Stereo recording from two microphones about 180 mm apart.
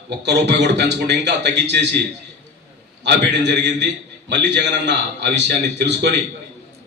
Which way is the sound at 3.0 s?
70° right (ahead or behind).